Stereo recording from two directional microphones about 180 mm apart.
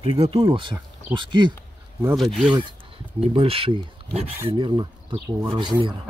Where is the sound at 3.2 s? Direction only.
30° right (ahead or behind).